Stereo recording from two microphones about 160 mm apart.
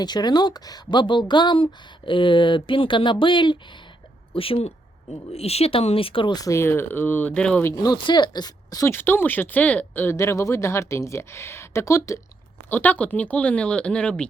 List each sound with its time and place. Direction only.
0.0 s a woman's voice: 25° left (ahead or behind); by 14.3 s 5° left (ahead or behind)